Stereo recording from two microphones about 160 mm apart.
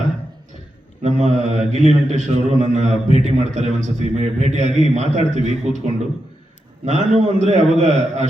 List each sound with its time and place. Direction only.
1.0 s mantra: 45° right (ahead or behind)
6.8 s mantra: 45° right (ahead or behind)